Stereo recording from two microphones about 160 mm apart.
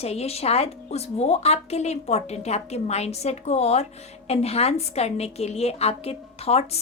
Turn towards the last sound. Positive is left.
turn(degrees=40)  # may be behind; listen again after turning